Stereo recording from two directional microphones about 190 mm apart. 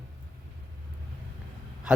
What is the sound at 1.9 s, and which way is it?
Speech, 5° right (ahead or behind).